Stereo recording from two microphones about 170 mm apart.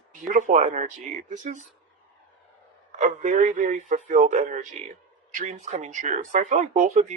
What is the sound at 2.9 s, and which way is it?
Speech, 45° right (ahead or behind).